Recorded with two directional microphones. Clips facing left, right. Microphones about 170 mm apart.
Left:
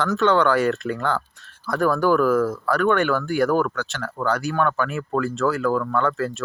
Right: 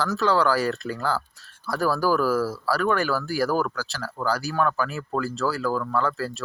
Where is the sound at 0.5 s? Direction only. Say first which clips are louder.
Left 4 dB; 35° right (ahead or behind).